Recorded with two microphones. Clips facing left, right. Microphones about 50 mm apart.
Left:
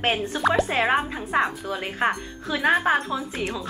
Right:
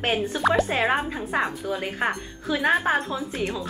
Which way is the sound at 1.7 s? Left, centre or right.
Centre.